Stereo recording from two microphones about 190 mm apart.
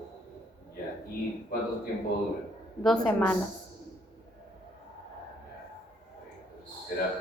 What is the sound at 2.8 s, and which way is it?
Speech, 5° left (ahead or behind).